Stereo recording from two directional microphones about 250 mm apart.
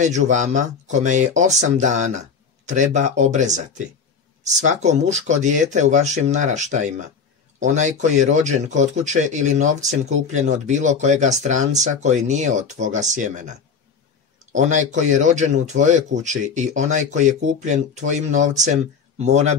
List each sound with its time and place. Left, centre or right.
0.0 s speech: right